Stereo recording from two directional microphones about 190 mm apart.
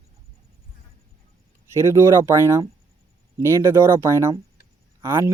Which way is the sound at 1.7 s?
15° right (ahead or behind).